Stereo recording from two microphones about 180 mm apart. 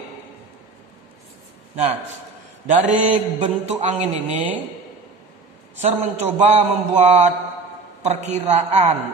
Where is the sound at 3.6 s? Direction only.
35° right (ahead or behind).